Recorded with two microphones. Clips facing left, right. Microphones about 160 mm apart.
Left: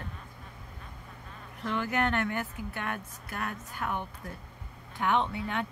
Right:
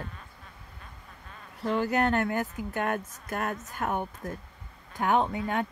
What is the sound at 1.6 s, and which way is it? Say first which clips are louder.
A woman's voice: right 4 dB; 35° right (ahead or behind).